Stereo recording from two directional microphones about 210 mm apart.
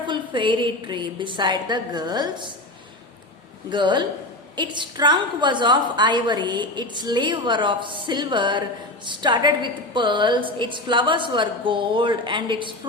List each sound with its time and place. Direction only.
0.1 s a woman's voice: 20° right (ahead or behind)
3.7 s a woman's voice: 20° right (ahead or behind)